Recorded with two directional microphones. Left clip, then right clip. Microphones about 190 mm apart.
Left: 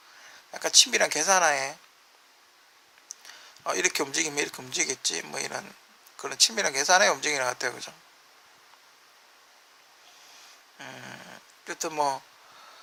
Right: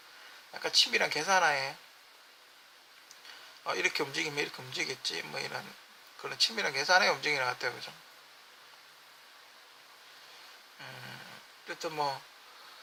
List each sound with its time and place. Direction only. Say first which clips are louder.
0.5 s speech: left 6 dB; 40° left (ahead or behind)
3.6 s speech: left 4 dB; 40° left (ahead or behind)
11.6 s speech: left 6 dB; 45° left (ahead or behind)